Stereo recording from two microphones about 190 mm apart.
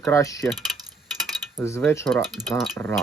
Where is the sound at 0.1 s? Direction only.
15° left (ahead or behind).